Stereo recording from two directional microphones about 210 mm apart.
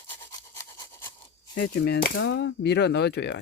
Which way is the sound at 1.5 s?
55° left (ahead or behind).